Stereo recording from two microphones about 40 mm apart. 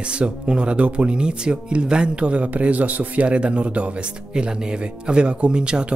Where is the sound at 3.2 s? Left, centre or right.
Right.